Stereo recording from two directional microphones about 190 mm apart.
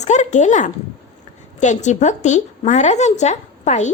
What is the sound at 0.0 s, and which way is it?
A woman's voice, 40° left (ahead or behind).